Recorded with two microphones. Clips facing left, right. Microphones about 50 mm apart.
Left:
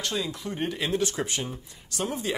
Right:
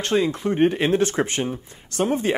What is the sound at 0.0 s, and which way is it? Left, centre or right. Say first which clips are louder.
Speech: right 10 dB; right.